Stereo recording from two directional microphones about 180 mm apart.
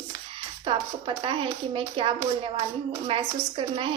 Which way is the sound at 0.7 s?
30° right (ahead or behind).